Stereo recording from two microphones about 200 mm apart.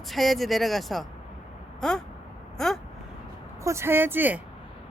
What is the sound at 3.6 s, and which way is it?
Speech, 15° right (ahead or behind).